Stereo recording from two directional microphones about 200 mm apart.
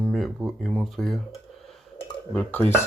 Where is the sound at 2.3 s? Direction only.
10° left (ahead or behind).